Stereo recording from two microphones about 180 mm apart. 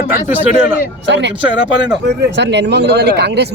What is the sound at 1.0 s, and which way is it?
Speech, 75° right (ahead or behind).